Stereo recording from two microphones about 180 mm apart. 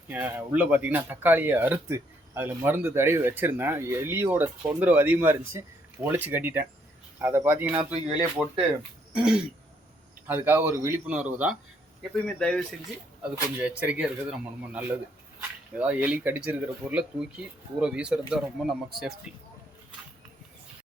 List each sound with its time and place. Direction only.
0.1 s speech: 10° right (ahead or behind)
12.1 s speech: 5° left (ahead or behind)
13.2 s speech: 10° right (ahead or behind)